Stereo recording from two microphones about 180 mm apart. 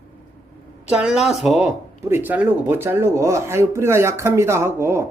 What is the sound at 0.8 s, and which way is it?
Speech, 5° right (ahead or behind).